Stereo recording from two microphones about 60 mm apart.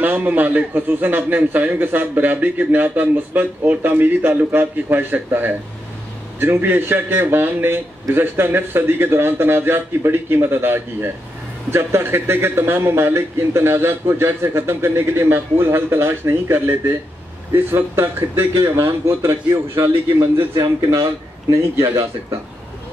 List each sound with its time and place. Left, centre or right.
0.0 s a man's voice: right